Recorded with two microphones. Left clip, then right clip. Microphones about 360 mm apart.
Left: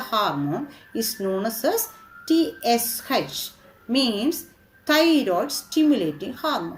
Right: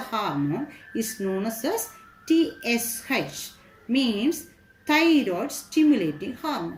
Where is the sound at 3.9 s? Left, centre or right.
Left.